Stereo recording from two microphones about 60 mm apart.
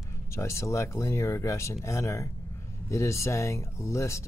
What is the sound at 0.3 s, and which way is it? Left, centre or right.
Speech, left.